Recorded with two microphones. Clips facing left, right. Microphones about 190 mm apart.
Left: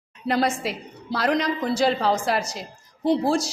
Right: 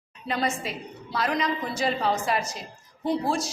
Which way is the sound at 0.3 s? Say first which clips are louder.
Left 5 dB; 80° left.